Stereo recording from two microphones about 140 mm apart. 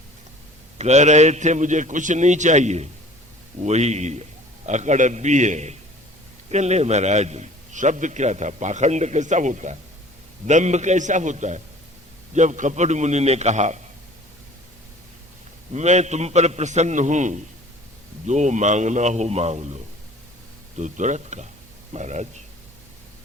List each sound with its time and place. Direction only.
0.8 s a man's voice: 55° right (ahead or behind)
15.7 s a man's voice: 55° right (ahead or behind)
20.7 s a man's voice: 60° right (ahead or behind)